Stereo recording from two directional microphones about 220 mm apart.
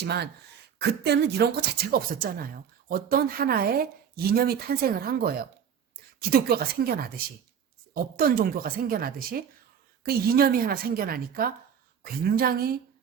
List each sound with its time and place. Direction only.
0.0 s speech: 50° right (ahead or behind)